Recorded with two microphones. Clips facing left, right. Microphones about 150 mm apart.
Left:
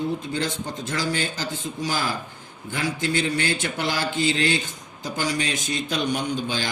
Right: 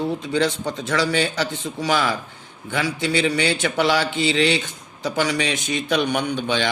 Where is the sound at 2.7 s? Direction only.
80° right.